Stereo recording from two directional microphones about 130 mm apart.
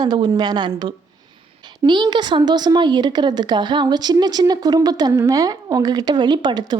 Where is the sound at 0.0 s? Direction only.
35° right (ahead or behind).